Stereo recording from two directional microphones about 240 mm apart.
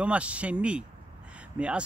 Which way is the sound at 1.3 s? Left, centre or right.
Centre.